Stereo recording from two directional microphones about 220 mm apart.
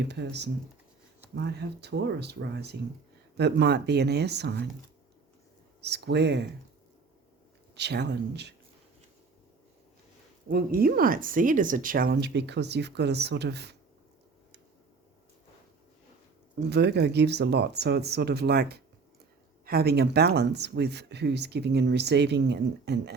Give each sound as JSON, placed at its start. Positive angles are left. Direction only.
{"t": 0.1, "sound": "speech", "side_deg": -50}
{"t": 5.8, "sound": "speech", "side_deg": -50}
{"t": 7.8, "sound": "speech", "side_deg": -50}
{"t": 10.5, "sound": "speech", "side_deg": -40}
{"t": 16.6, "sound": "speech", "side_deg": -50}